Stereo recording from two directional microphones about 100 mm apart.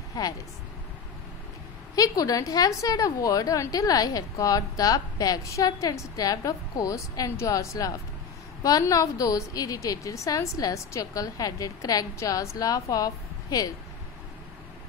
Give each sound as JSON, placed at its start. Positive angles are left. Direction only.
{"t": 0.2, "sound": "a woman's voice", "side_deg": 40}
{"t": 2.0, "sound": "a woman's voice", "side_deg": 35}